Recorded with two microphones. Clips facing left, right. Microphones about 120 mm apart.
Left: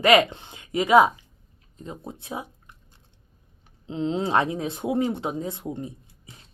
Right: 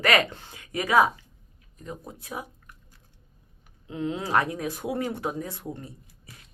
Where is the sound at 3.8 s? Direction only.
20° left (ahead or behind).